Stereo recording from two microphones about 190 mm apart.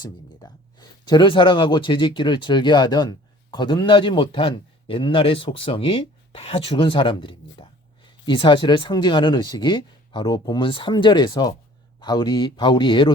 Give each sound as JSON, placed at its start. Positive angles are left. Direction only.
{"t": 0.0, "sound": "speech", "side_deg": 20}